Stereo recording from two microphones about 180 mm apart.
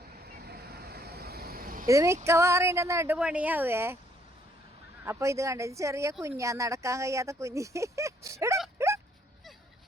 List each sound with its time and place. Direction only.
0.4 s vehicle: 60° right (ahead or behind)
1.9 s speech: 15° right (ahead or behind)
5.0 s speech: 15° right (ahead or behind)
8.8 s dog: 15° right (ahead or behind)